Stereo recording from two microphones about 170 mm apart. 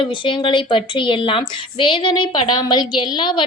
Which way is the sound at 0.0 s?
30° left (ahead or behind).